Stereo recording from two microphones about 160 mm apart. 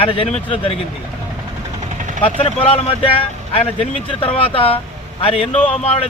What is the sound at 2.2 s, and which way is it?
Speech, 35° left (ahead or behind).